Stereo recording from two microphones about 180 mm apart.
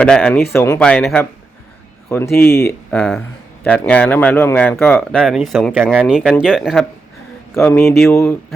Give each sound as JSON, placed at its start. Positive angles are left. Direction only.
{"t": 0.0, "sound": "speech", "side_deg": 5}
{"t": 2.3, "sound": "speech", "side_deg": 60}
{"t": 2.9, "sound": "speech", "side_deg": 5}
{"t": 7.5, "sound": "speech", "side_deg": 15}